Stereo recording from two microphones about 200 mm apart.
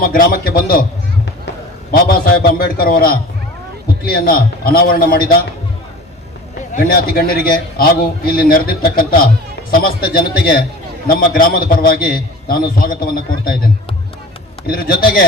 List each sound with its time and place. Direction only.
0.0 s a man's voice: 50° left (ahead or behind)
2.0 s a man's voice: 45° left (ahead or behind)
6.7 s a man's voice: 45° left (ahead or behind)
14.7 s a man's voice: 45° left (ahead or behind)